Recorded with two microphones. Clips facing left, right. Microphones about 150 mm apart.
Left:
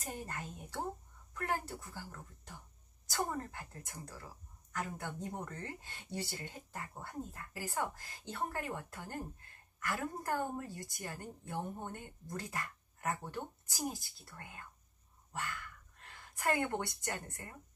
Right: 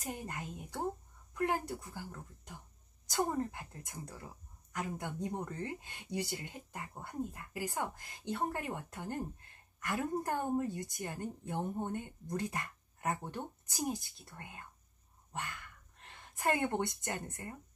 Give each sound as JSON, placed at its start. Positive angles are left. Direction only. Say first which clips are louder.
{"t": 0.0, "sound": "a woman's voice", "louder": "right 2 dB", "side_deg": -15}